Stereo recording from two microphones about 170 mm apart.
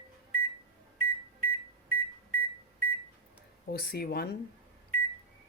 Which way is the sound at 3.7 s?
65° left (ahead or behind).